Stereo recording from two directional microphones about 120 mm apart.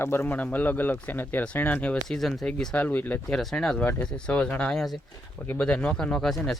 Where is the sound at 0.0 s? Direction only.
20° left (ahead or behind).